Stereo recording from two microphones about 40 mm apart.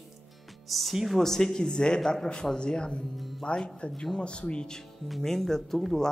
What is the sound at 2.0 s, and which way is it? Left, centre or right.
Speech, centre.